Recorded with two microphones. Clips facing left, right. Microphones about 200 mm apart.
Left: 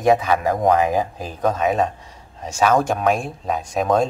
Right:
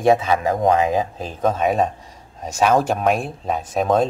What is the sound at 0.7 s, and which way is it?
Speech, 20° right (ahead or behind).